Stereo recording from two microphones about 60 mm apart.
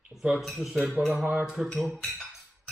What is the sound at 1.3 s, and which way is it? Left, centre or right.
Cutlery, centre.